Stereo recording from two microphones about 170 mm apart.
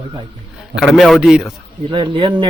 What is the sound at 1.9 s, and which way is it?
Speech, 30° right (ahead or behind).